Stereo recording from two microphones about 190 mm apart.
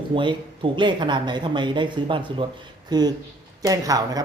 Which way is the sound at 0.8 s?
25° right (ahead or behind).